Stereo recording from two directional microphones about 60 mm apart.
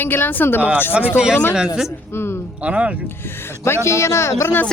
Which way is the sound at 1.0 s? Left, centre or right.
Centre.